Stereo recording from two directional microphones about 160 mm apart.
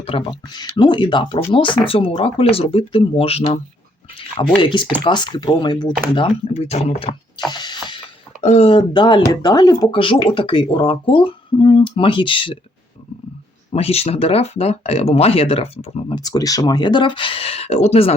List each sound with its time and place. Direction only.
0.0 s speech: 35° left (ahead or behind)
8.4 s speech: 40° left (ahead or behind)
13.7 s speech: 40° left (ahead or behind)
16.1 s speech: 25° left (ahead or behind); by 18.1 s 40° left (ahead or behind)